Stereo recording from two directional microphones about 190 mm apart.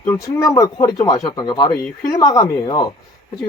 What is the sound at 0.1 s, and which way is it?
Speech, 15° left (ahead or behind).